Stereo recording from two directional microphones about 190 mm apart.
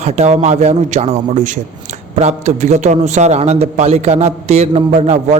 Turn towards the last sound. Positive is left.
turn(degrees=-35)  # may be behind; listen again after turning